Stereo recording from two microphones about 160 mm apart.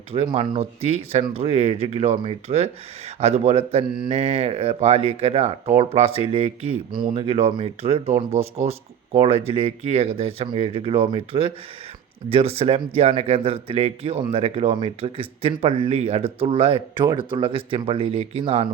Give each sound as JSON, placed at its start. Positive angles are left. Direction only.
{"t": 0.3, "sound": "speech", "side_deg": -40}